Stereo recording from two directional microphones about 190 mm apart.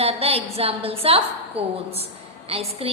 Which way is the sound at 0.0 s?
30° right (ahead or behind).